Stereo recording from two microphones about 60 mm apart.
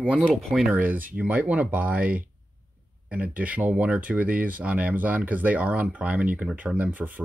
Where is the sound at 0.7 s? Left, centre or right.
Right.